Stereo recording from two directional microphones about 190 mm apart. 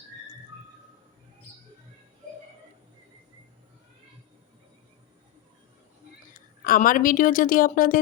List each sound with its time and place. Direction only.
6.3 s a woman's voice: 45° left (ahead or behind)